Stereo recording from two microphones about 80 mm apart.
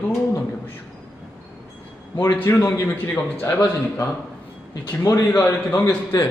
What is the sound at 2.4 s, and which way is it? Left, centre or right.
A man's voice, left.